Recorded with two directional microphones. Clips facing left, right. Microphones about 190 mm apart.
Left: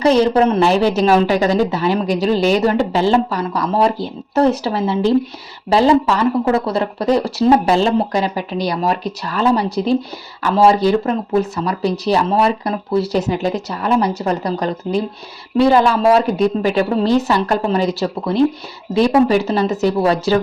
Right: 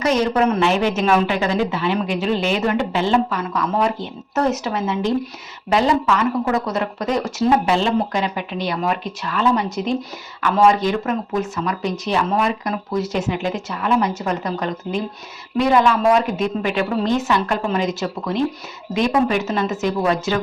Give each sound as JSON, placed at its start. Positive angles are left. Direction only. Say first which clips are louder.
{"t": 0.0, "sound": "a woman's voice", "louder": "left 5 dB", "side_deg": 30}